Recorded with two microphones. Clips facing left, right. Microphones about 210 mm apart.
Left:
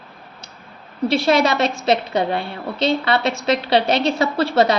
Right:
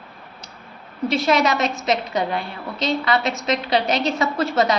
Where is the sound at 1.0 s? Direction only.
30° left (ahead or behind).